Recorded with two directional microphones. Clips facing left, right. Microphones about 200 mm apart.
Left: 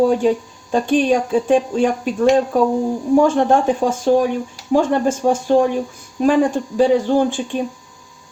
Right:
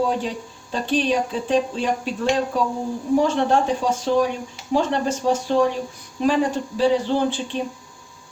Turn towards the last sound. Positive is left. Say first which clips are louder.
# left 5 dB
turn(degrees=50)  # may be behind; listen again after turning